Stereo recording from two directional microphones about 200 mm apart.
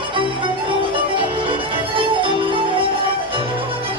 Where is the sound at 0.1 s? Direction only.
25° right (ahead or behind).